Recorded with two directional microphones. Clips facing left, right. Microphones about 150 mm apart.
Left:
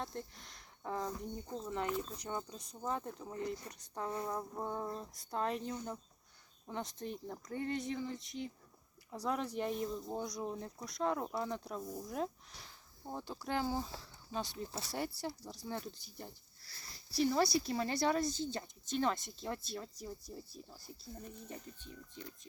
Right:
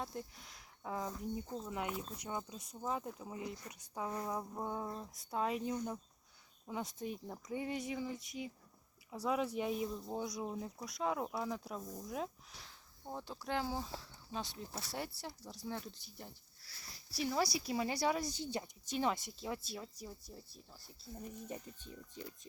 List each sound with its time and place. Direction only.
0.0 s speech: 5° right (ahead or behind)